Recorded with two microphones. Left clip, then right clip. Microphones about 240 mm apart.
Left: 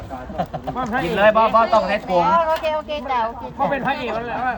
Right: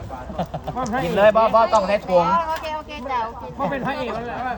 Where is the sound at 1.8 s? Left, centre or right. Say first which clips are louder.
Even; left.